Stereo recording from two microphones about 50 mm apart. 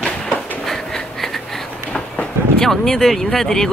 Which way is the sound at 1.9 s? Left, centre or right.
Centre.